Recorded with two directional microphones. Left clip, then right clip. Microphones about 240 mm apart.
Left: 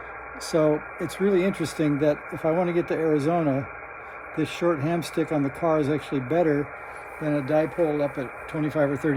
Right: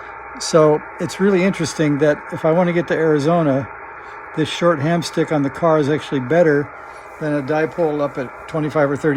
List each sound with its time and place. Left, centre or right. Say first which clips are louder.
0.4 s speech: right 9 dB; right